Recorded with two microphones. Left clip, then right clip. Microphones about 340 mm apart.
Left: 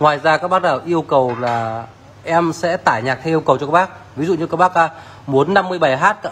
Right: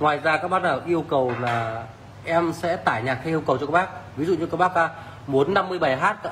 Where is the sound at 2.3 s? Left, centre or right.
Left.